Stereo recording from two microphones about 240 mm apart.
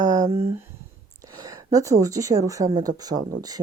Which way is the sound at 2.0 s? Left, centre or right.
Centre.